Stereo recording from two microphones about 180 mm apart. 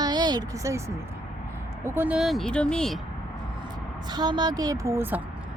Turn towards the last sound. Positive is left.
turn(degrees=-10)  # may be behind; listen again after turning